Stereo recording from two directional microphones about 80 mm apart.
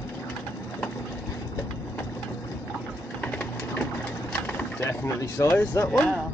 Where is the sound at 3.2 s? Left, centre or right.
Centre.